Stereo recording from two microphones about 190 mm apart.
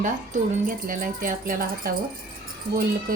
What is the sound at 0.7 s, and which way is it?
Speech, 45° right (ahead or behind).